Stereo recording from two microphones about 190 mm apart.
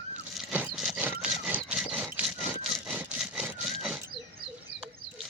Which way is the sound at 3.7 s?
Centre (ahead or behind).